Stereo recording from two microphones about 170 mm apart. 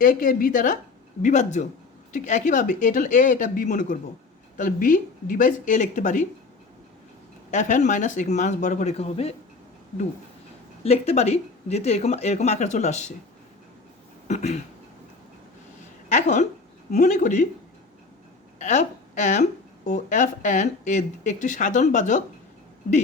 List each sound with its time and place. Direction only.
0.0 s a woman's voice: 55° left (ahead or behind)
7.5 s a woman's voice: 45° left (ahead or behind)
10.8 s speech: 40° left (ahead or behind)
14.3 s a woman's voice: 40° left (ahead or behind)
16.0 s a woman's voice: 45° left (ahead or behind)
18.6 s a woman's voice: 45° left (ahead or behind)